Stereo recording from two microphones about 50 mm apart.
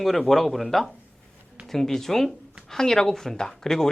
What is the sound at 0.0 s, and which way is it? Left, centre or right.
A man's voice, centre.